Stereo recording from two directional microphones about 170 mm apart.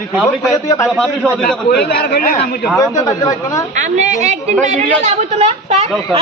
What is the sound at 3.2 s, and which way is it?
Speech, 20° left (ahead or behind).